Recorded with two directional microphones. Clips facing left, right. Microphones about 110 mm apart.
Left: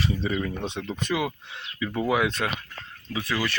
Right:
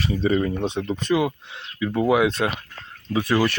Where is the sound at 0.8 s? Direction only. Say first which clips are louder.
Right 6 dB; 25° right (ahead or behind).